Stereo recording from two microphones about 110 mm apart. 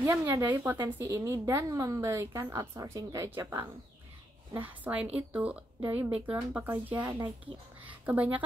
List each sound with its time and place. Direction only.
0.0 s a woman's voice: 25° right (ahead or behind)
3.3 s a woman's voice: 20° right (ahead or behind)
7.8 s a sound: 15° right (ahead or behind)